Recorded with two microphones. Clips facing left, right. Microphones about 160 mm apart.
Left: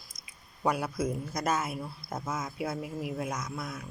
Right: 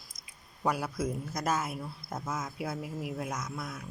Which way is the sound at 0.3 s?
Centre (ahead or behind).